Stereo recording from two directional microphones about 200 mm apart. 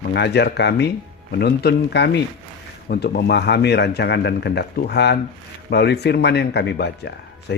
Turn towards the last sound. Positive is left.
turn(degrees=55)  # may be behind; listen again after turning